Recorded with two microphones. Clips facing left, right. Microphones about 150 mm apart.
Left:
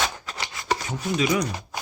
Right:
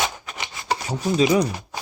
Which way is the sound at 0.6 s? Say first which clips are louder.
Right 3 dB; 35° right (ahead or behind).